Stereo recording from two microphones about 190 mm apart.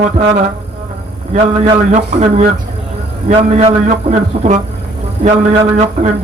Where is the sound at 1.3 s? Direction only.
35° right (ahead or behind).